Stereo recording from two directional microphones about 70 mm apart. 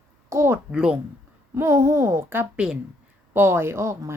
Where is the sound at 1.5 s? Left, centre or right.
Right.